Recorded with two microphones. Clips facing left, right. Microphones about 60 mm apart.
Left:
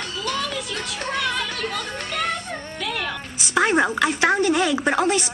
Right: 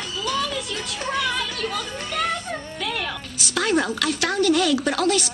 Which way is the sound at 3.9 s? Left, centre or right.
Left.